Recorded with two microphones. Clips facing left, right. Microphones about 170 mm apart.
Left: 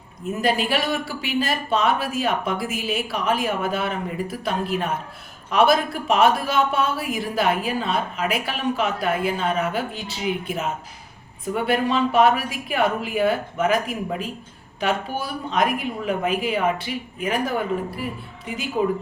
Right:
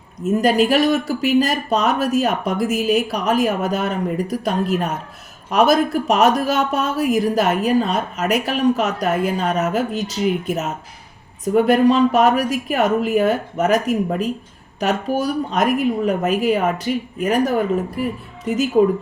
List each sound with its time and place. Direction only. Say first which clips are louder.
0.3 s speech: right 7 dB; 45° right (ahead or behind)